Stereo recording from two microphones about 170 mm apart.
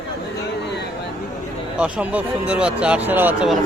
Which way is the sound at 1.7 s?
5° right (ahead or behind).